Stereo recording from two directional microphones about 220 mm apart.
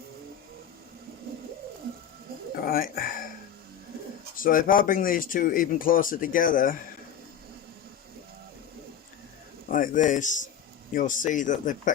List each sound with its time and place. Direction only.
2.6 s speech: 40° left (ahead or behind)
4.4 s speech: 40° left (ahead or behind)
9.7 s speech: 35° left (ahead or behind)